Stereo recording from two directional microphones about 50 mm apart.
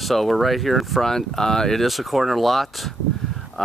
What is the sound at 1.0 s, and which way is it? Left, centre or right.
Speech, centre.